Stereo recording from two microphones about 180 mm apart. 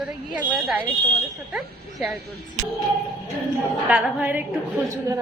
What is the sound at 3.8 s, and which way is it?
A woman's voice, 5° right (ahead or behind).